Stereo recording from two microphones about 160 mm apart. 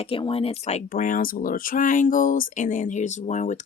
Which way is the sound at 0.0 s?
35° left (ahead or behind).